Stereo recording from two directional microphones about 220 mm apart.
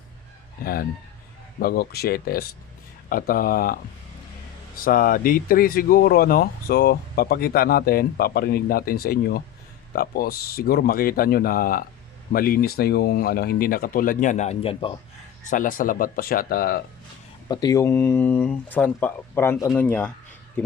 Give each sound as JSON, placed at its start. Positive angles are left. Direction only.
{"t": 0.6, "sound": "speech", "side_deg": 40}
{"t": 4.8, "sound": "speech", "side_deg": 40}
{"t": 15.4, "sound": "speech", "side_deg": 35}
{"t": 17.5, "sound": "speech", "side_deg": 15}